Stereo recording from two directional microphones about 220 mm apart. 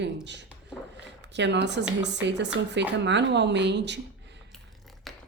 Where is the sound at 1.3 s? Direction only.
55° right (ahead or behind).